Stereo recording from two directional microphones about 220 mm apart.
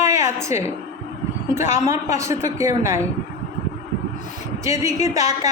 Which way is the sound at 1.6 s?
30° left (ahead or behind).